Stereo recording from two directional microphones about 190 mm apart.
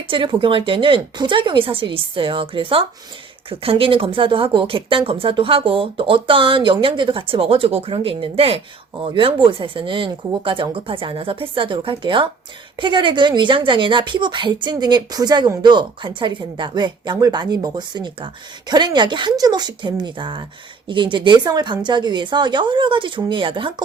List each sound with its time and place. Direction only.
0.1 s a woman's voice: 25° right (ahead or behind)